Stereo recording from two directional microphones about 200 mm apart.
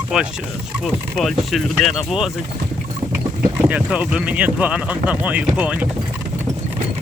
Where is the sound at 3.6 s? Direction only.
5° right (ahead or behind).